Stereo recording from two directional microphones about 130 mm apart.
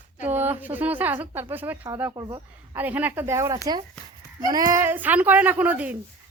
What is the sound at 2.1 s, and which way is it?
Speech, 30° right (ahead or behind).